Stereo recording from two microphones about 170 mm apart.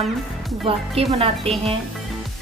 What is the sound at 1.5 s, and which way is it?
Speech, 35° right (ahead or behind).